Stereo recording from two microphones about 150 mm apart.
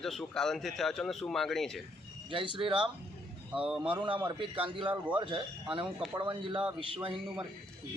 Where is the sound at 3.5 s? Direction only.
5° right (ahead or behind).